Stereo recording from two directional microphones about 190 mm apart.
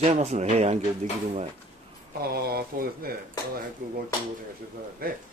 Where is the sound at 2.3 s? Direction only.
55° right (ahead or behind).